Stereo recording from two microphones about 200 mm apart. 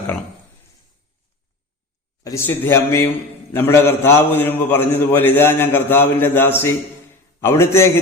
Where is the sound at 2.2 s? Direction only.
15° left (ahead or behind).